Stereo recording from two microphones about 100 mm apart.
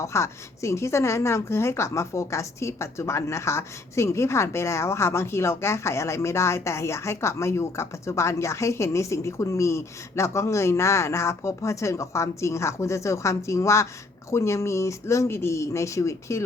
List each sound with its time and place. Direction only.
0.0 s a woman's voice: 30° left (ahead or behind)